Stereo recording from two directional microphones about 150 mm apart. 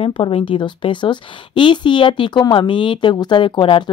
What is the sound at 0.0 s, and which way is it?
A woman's voice, 35° left (ahead or behind).